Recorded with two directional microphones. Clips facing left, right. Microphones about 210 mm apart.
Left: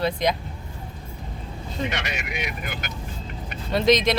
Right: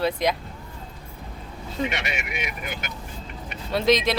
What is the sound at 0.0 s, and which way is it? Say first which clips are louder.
Speech: even; 5° right (ahead or behind).